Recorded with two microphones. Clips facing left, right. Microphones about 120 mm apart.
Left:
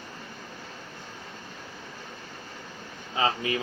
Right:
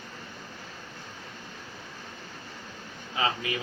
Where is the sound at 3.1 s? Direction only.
30° left (ahead or behind).